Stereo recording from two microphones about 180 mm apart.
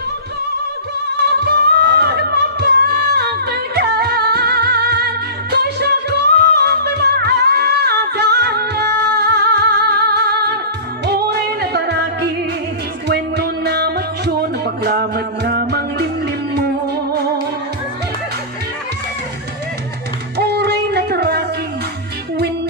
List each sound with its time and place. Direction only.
1.5 s music: 65° right (ahead or behind)
20.3 s music: 65° right (ahead or behind)